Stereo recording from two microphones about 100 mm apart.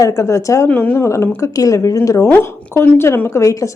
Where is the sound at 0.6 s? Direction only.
15° left (ahead or behind).